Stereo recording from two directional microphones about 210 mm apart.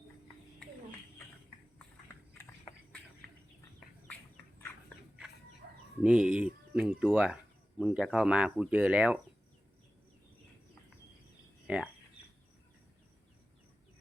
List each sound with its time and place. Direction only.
6.0 s speech: 5° right (ahead or behind)